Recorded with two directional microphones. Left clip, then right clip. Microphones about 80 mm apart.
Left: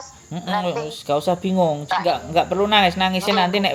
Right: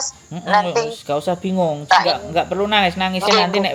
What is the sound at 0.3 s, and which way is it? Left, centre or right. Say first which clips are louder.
A woman's voice: right 6 dB; centre.